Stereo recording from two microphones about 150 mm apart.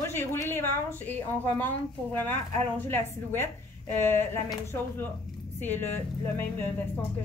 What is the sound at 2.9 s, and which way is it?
Speech, 15° left (ahead or behind).